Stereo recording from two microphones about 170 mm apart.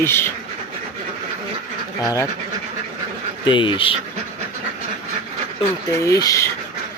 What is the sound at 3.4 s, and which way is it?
Speech, 30° left (ahead or behind).